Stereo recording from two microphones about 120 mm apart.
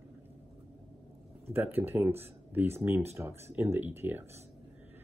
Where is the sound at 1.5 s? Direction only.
15° right (ahead or behind).